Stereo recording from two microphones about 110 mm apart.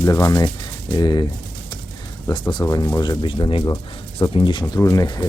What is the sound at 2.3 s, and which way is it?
Speech, 40° left (ahead or behind).